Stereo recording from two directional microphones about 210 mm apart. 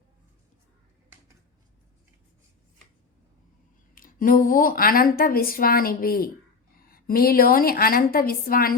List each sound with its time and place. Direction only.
3.9 s speech: 40° left (ahead or behind)